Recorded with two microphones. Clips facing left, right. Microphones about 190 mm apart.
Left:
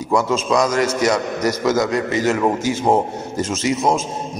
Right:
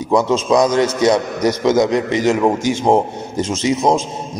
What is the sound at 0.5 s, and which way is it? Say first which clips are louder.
A man's voice: right 4 dB; 20° right (ahead or behind).